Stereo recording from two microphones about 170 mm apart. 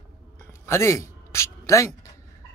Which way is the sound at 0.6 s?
15° left (ahead or behind).